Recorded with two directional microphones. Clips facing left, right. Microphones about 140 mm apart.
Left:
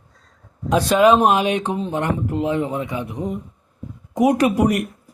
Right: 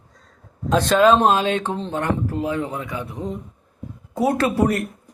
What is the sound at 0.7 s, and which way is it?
Speech, 10° left (ahead or behind).